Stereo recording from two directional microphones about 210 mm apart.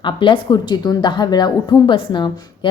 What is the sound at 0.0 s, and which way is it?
A woman's voice, 25° left (ahead or behind).